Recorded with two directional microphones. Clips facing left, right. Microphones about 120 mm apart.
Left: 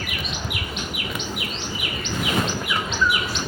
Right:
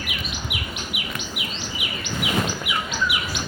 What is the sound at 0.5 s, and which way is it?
Bird, 10° right (ahead or behind).